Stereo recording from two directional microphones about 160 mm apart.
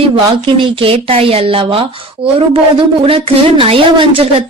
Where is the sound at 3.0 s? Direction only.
35° right (ahead or behind).